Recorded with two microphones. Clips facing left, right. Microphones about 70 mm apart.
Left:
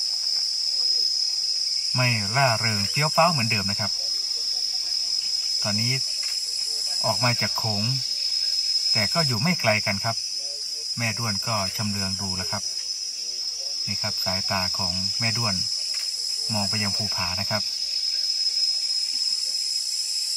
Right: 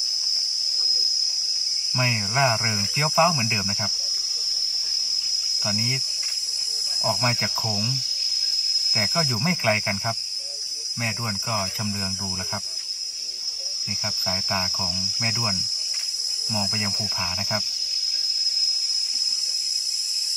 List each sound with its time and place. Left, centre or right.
2.0 s speech: centre
5.7 s speech: centre
7.0 s speech: centre
8.9 s speech: centre
14.2 s speech: centre